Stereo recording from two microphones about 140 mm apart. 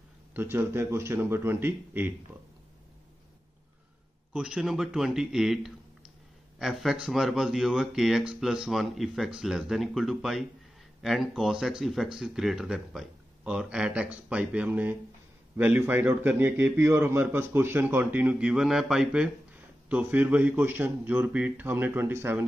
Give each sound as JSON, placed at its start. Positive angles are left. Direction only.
{"t": 0.3, "sound": "a man's voice", "side_deg": -15}
{"t": 4.3, "sound": "a man's voice", "side_deg": -5}